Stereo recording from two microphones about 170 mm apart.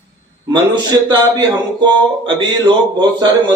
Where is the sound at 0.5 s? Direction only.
25° right (ahead or behind).